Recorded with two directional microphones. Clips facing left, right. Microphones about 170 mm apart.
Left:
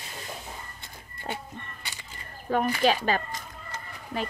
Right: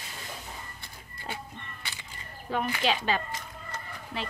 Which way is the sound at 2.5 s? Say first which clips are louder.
Left 5 dB; 45° left (ahead or behind).